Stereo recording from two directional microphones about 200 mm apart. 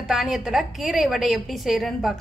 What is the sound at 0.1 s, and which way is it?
A woman's voice, centre (ahead or behind).